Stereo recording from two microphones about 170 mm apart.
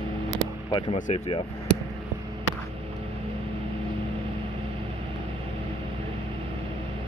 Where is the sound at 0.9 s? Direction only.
45° left (ahead or behind).